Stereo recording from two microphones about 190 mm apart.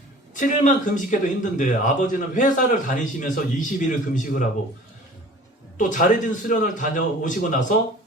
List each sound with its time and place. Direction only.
0.3 s speech: 40° left (ahead or behind)
5.7 s speech: 45° left (ahead or behind)